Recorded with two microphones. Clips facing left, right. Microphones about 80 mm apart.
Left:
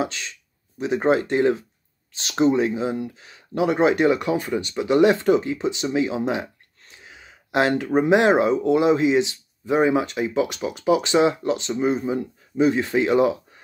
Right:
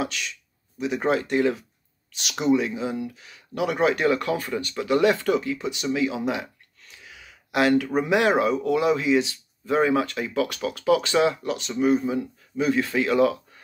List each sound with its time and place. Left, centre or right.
0.0 s speech: left